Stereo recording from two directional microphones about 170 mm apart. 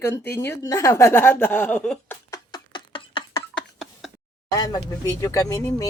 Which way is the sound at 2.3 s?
25° left (ahead or behind).